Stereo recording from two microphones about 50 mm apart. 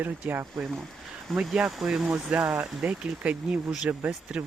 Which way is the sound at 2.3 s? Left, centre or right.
Right.